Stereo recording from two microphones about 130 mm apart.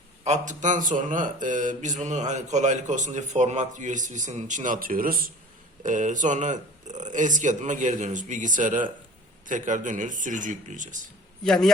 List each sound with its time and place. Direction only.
0.3 s speech: 75° right (ahead or behind); by 5.2 s 90° right
5.8 s speech: 75° right (ahead or behind)
11.4 s a man's voice: 5° left (ahead or behind)